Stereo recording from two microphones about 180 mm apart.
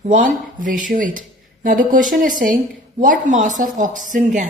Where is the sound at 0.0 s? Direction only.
45° right (ahead or behind).